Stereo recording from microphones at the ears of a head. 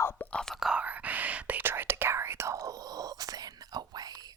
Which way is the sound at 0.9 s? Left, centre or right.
Right.